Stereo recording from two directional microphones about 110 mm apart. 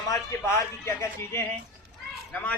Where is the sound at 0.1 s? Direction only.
25° left (ahead or behind).